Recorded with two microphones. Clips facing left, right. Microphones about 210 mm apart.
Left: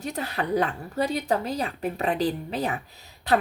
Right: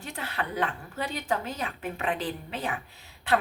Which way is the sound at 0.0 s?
40° left (ahead or behind).